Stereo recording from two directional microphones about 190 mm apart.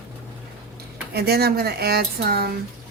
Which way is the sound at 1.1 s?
55° right (ahead or behind).